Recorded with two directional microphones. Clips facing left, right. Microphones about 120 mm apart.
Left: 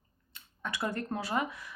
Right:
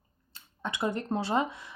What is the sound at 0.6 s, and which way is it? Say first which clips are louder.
Speech: right 3 dB; 20° right (ahead or behind).